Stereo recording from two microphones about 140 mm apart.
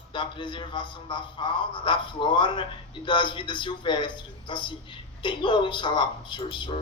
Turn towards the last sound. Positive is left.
turn(degrees=35)  # may be behind; listen again after turning